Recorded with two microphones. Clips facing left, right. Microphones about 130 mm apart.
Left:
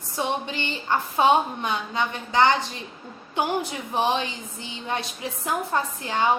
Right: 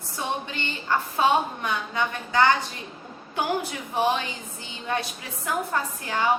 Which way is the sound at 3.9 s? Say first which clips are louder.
Even; 25° left (ahead or behind).